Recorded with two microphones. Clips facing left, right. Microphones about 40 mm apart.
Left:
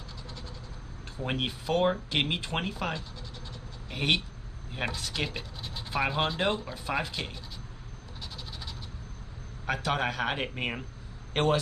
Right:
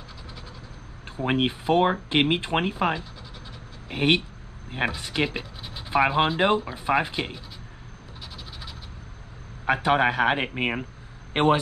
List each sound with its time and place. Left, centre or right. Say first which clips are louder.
1.0 s speech: right 8 dB; right
9.7 s speech: right 8 dB; right